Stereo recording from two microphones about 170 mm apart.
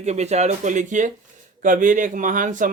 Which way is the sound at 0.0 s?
40° right (ahead or behind).